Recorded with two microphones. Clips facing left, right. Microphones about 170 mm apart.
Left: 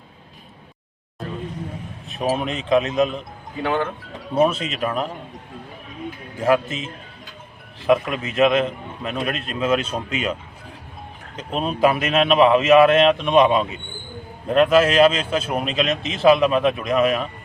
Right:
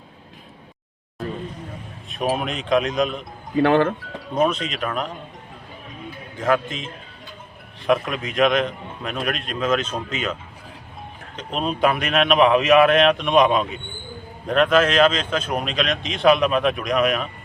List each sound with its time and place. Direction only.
2.0 s a man's voice: centre (ahead or behind)
3.6 s speech: 65° right (ahead or behind)
4.4 s speech: 5° left (ahead or behind)
6.3 s a man's voice: 10° left (ahead or behind)
11.3 s a man's voice: 5° left (ahead or behind)